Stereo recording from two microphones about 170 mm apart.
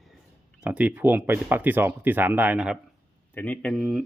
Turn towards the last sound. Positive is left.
turn(degrees=0)  # may be behind; listen again after turning